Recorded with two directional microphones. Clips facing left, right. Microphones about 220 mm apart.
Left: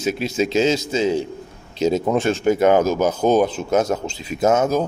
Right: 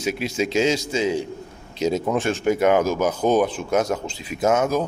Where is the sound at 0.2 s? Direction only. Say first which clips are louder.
Left 2 dB; 30° left (ahead or behind).